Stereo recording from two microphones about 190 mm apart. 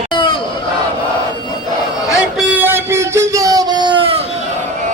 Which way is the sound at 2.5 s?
10° right (ahead or behind).